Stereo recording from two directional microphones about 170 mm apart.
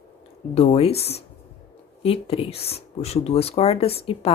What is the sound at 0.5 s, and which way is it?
Speech, 35° left (ahead or behind).